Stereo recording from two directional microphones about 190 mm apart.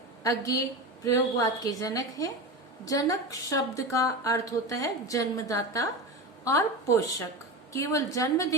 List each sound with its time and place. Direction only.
0.2 s a woman's voice: 20° left (ahead or behind)